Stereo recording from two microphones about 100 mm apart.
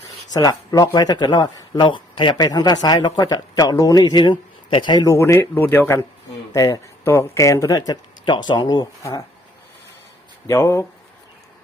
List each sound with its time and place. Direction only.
0.3 s speech: 40° left (ahead or behind)
2.5 s speech: 40° left (ahead or behind)
5.1 s speech: 30° left (ahead or behind)
8.2 s speech: 45° left (ahead or behind)
10.4 s speech: 35° left (ahead or behind)